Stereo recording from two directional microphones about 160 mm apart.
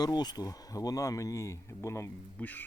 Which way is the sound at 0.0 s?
25° left (ahead or behind).